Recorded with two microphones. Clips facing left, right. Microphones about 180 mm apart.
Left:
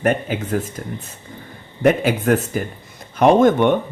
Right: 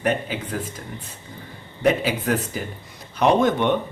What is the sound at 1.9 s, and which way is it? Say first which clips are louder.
Speech: left 5 dB; 50° left (ahead or behind).